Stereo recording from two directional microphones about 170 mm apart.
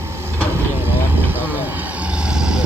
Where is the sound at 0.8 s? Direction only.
10° right (ahead or behind).